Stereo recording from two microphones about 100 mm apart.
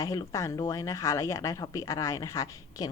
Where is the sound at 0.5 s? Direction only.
40° left (ahead or behind).